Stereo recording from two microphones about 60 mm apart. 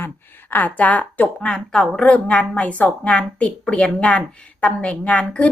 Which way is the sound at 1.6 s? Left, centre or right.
Centre.